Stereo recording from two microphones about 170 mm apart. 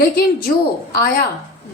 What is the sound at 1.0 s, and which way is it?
Speech, 60° left (ahead or behind).